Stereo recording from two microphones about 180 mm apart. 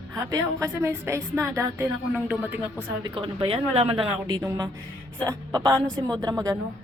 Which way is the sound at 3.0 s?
30° right (ahead or behind).